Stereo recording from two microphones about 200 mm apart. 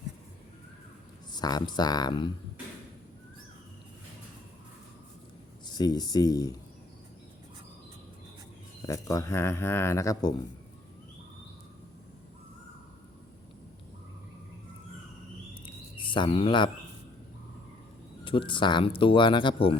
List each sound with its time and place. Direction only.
1.3 s speech: 20° left (ahead or behind)
5.6 s speech: 20° left (ahead or behind)
8.9 s speech: 15° left (ahead or behind)
15.6 s a sound: 25° left (ahead or behind)
18.3 s speech: 25° left (ahead or behind)